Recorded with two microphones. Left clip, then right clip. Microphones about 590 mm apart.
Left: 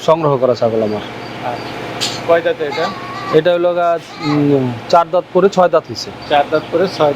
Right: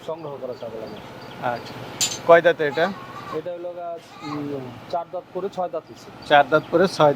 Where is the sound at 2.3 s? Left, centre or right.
Right.